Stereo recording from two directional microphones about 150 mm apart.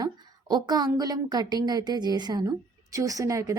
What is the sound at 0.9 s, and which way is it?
A woman's voice, 25° right (ahead or behind).